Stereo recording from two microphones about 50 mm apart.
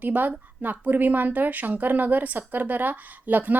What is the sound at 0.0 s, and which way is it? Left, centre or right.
A woman's voice, right.